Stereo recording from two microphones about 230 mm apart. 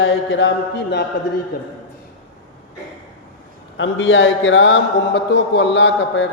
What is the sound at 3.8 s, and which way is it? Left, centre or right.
A man's voice, left.